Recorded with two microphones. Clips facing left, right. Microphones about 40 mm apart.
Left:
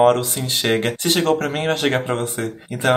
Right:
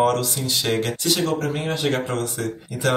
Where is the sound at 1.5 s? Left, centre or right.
Left.